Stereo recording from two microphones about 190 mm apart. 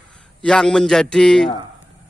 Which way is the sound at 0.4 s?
5° left (ahead or behind).